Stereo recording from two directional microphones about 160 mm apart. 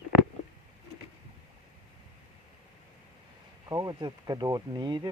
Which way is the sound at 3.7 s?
25° right (ahead or behind).